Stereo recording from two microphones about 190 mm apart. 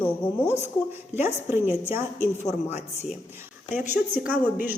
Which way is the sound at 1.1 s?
10° right (ahead or behind).